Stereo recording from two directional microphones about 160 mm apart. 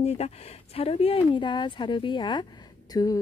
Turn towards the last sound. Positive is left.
turn(degrees=20)  # may be behind; listen again after turning